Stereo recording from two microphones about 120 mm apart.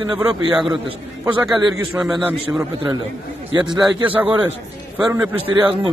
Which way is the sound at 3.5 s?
40° right (ahead or behind).